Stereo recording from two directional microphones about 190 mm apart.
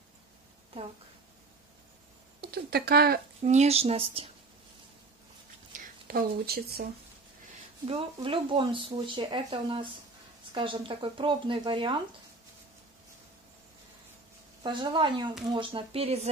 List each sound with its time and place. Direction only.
2.4 s speech: 55° right (ahead or behind)
3.4 s speech: 35° right (ahead or behind)
5.7 s whispering: 50° right (ahead or behind)
7.8 s speech: 25° right (ahead or behind)
14.6 s speech: 25° right (ahead or behind)